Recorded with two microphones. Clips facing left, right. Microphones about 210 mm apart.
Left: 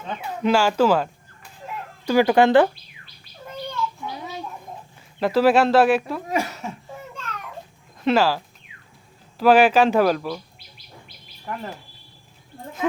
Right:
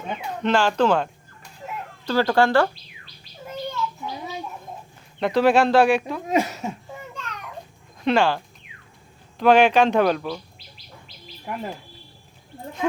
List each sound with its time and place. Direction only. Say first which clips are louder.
0.2 s chicken: left 2 dB; 10° left (ahead or behind)
2.0 s speech: left 3 dB; 15° left (ahead or behind)
3.4 s a sound: right 2 dB; 5° right (ahead or behind)
4.9 s speech: left 1 dB; 5° left (ahead or behind)
6.2 s speech: right 3 dB; 20° right (ahead or behind)
7.9 s speech: left 1 dB; 5° left (ahead or behind)
9.4 s speech: left 1 dB; 5° left (ahead or behind)
11.5 s speech: right 1 dB; 15° right (ahead or behind)